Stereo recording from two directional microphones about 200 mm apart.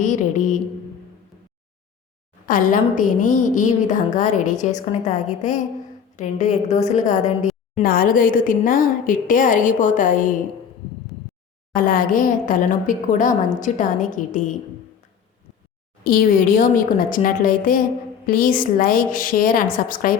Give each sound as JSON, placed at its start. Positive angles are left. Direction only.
{"t": 0.0, "sound": "a woman's voice", "side_deg": 40}
{"t": 2.5, "sound": "a woman's voice", "side_deg": 40}
{"t": 11.7, "sound": "a woman's voice", "side_deg": 45}
{"t": 16.0, "sound": "a woman's voice", "side_deg": 45}